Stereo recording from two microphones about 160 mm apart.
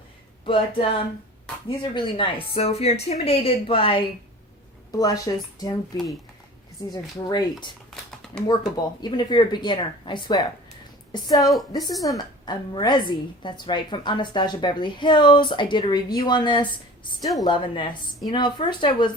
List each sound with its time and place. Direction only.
0.4 s a woman's voice: 35° left (ahead or behind)
4.9 s a woman's voice: 20° left (ahead or behind)
6.9 s a woman's voice: 25° left (ahead or behind)
8.7 s a woman's voice: 25° left (ahead or behind)